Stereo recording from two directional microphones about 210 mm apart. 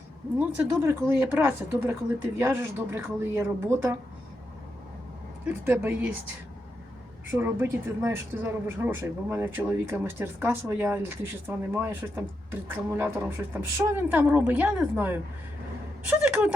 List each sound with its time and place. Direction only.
0.3 s speech: 5° right (ahead or behind)
5.5 s speech: 10° right (ahead or behind)
7.3 s a woman's voice: 10° right (ahead or behind)